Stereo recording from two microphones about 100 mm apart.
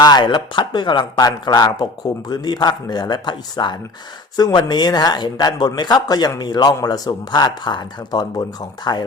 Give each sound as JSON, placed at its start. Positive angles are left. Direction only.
{"t": 0.0, "sound": "speech", "side_deg": 45}